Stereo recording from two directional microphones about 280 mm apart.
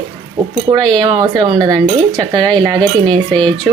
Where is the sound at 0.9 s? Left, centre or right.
Centre.